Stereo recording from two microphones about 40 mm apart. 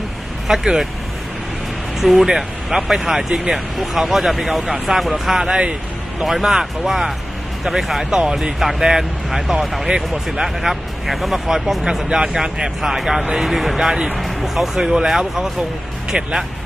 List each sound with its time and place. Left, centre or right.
0.4 s speech: centre
2.0 s speech: centre
3.2 s speech: centre
3.5 s speech: centre
8.2 s speech: right; by 11.3 s centre
11.4 s speech: centre
13.7 s speech: centre
14.1 s speech: centre